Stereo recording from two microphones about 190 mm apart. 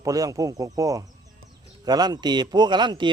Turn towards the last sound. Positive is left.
turn(degrees=-25)  # may be behind; listen again after turning